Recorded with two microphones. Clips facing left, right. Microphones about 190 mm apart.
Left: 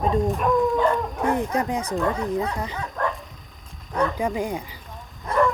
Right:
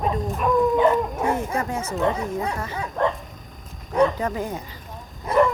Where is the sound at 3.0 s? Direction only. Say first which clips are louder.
Right 4 dB; 25° right (ahead or behind).